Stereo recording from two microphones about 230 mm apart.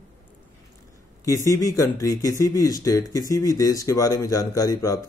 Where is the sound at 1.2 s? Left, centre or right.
Centre.